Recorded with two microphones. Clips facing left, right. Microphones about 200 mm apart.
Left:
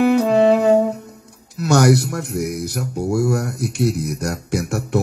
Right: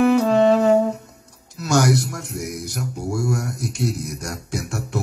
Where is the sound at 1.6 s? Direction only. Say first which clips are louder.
Left 4 dB; 65° left (ahead or behind).